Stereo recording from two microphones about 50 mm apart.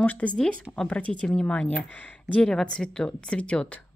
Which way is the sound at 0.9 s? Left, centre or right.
Left.